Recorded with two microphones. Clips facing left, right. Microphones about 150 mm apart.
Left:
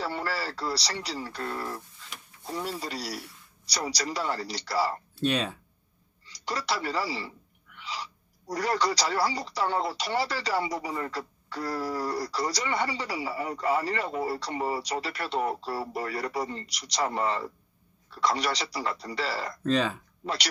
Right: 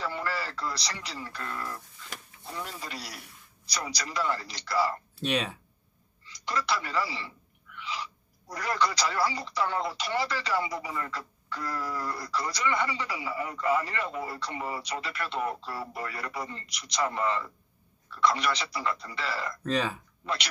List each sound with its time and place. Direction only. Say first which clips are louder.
0.0 s speech: left 2 dB; 35° left (ahead or behind)
5.3 s speech: right 3 dB; 10° right (ahead or behind)
6.2 s speech: even; 35° left (ahead or behind)
19.6 s speech: left 4 dB; 5° right (ahead or behind)